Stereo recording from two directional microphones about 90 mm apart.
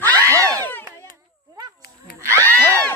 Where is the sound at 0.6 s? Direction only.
25° left (ahead or behind).